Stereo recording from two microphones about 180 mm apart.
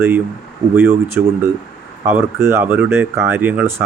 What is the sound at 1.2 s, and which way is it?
Speech, 5° right (ahead or behind).